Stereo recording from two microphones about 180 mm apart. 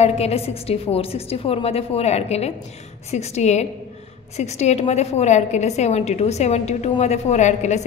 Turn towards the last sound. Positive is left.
turn(degrees=40)  # may be behind; listen again after turning